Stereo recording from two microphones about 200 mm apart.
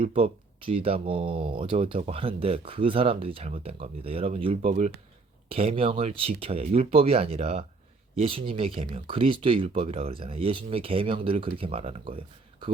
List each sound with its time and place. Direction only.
0.0 s speech: 25° right (ahead or behind)